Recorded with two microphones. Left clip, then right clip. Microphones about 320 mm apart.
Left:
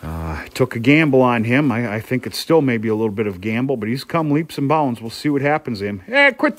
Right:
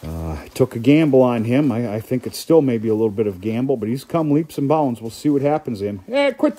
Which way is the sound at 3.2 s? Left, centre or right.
Left.